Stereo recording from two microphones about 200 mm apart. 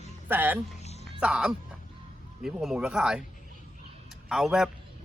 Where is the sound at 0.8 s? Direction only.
30° left (ahead or behind).